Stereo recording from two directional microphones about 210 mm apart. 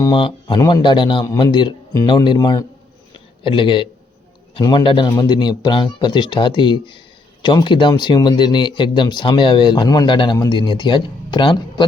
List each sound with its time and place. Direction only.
0.0 s speech: 25° left (ahead or behind)